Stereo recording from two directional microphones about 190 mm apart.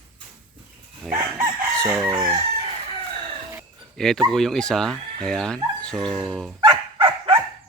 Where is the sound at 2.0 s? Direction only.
25° right (ahead or behind).